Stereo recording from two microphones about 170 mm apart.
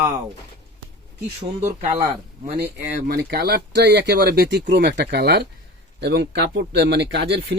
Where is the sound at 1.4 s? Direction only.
40° right (ahead or behind).